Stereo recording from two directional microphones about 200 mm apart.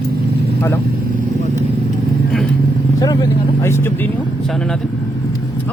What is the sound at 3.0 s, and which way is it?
Speech, 15° left (ahead or behind).